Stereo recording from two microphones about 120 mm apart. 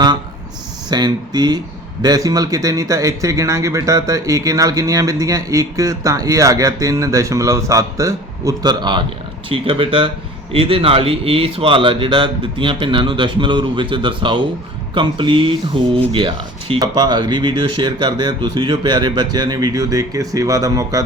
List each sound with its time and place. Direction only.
0.9 s a man's voice: 35° right (ahead or behind)
16.8 s speech: 35° right (ahead or behind)